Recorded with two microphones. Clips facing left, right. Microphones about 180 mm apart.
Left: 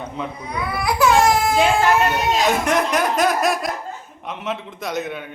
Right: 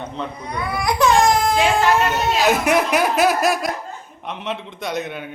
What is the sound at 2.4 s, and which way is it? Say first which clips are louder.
A man's voice: right 4 dB; 10° right (ahead or behind).